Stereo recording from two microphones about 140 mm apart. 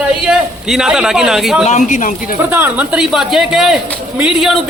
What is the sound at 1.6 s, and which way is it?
Speech, 60° left (ahead or behind).